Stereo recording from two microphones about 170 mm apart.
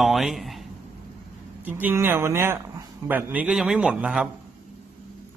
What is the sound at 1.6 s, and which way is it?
A man's voice, 10° right (ahead or behind).